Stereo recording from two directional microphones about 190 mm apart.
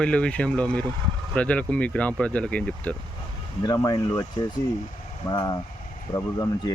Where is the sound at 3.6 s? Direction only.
20° left (ahead or behind).